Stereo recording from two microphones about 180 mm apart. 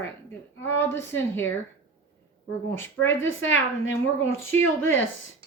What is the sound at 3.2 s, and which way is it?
A woman's voice, 90° left.